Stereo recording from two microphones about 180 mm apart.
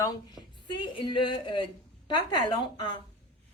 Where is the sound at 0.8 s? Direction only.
25° left (ahead or behind).